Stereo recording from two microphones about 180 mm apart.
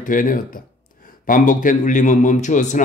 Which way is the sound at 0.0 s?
50° left (ahead or behind).